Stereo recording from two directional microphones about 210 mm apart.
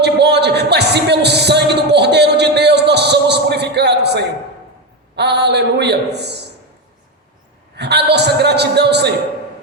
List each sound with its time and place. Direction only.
0.0 s a sound: 55° right (ahead or behind)
5.1 s a man's voice: 50° right (ahead or behind)
7.8 s a man's voice: 55° right (ahead or behind)